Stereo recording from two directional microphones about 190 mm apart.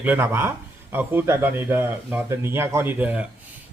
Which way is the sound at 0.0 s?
10° right (ahead or behind).